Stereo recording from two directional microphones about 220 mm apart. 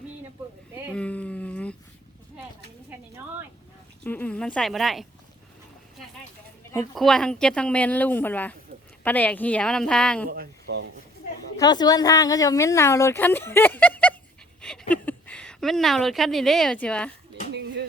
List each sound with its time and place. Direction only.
0.9 s a sound: 5° left (ahead or behind)
4.0 s speech: 5° left (ahead or behind)
6.9 s speech: centre (ahead or behind)
10.2 s speech: 45° right (ahead or behind)
11.5 s a woman's voice: 20° left (ahead or behind)